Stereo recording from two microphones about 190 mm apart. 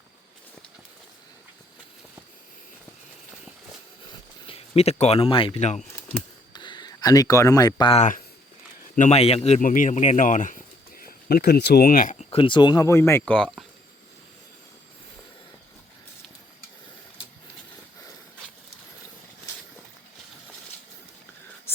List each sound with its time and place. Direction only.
4.4 s speech: 30° left (ahead or behind)
6.0 s a sound: 10° left (ahead or behind)
6.5 s speech: 25° left (ahead or behind); by 12.1 s 45° left (ahead or behind)
12.3 s speech: 25° left (ahead or behind); by 13.7 s 5° left (ahead or behind)